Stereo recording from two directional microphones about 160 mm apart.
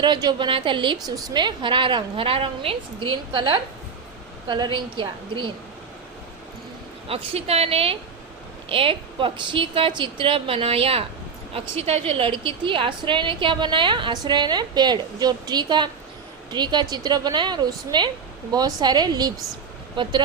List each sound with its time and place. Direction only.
0.0 s a woman's voice: 25° right (ahead or behind)
7.1 s a woman's voice: 40° right (ahead or behind)